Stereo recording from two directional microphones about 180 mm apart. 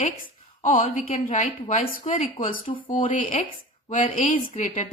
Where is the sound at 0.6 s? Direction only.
50° left (ahead or behind).